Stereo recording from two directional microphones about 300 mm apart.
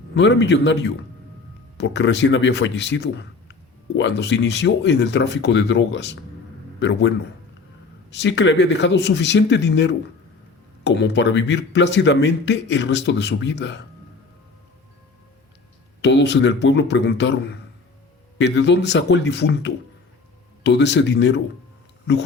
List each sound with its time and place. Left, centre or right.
0.2 s a man's voice: left
8.1 s speech: left
16.0 s speech: left